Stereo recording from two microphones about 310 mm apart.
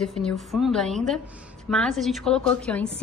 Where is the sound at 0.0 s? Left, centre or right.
Centre.